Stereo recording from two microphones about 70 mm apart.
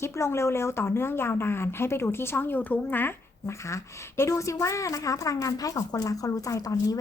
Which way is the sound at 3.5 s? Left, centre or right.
Left.